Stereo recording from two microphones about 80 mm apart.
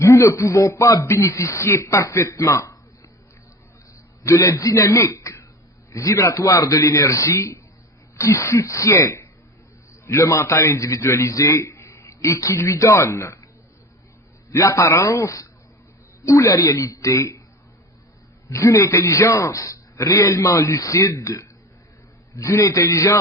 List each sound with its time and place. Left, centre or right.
0.0 s a man's voice: left
4.2 s a man's voice: left
14.5 s a man's voice: left
18.4 s a man's voice: left